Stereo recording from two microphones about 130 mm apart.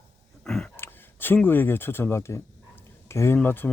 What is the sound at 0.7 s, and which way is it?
Speech, 15° left (ahead or behind).